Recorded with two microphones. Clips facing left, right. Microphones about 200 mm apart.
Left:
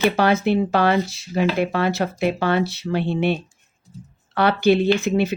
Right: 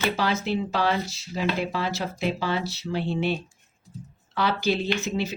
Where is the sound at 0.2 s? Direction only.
60° left (ahead or behind).